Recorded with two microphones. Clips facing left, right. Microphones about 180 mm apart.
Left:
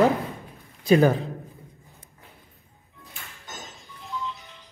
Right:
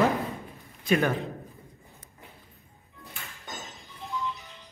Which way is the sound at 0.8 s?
35° left (ahead or behind).